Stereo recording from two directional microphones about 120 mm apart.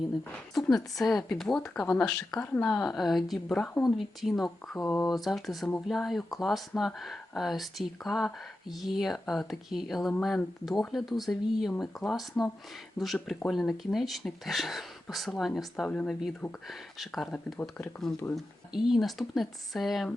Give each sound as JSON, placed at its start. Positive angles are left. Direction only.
{"t": 0.5, "sound": "speech", "side_deg": 0}
{"t": 16.6, "sound": "speech", "side_deg": 0}
{"t": 17.3, "sound": "speech", "side_deg": 15}
{"t": 18.3, "sound": "speech", "side_deg": 0}